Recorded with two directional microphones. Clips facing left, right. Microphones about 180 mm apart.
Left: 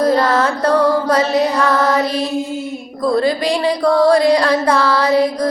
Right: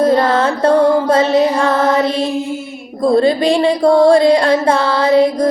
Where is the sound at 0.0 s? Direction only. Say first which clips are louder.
Right 2 dB; 25° right (ahead or behind).